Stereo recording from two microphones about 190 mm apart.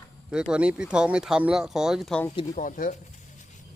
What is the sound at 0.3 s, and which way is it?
Speech, 5° right (ahead or behind).